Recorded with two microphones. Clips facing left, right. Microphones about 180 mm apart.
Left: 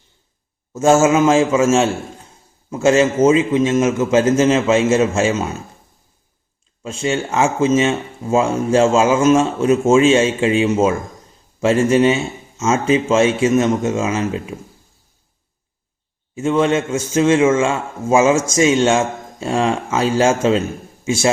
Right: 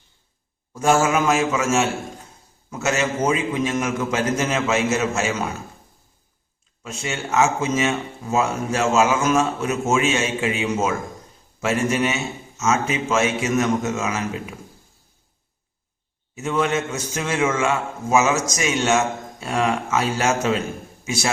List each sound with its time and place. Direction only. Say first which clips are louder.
0.7 s a man's voice: left 6 dB; 25° left (ahead or behind)
6.8 s a man's voice: left 8 dB; 30° left (ahead or behind)
16.3 s a man's voice: left 6 dB; 30° left (ahead or behind)